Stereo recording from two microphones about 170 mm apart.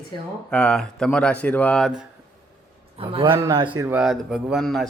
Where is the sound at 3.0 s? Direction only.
30° right (ahead or behind).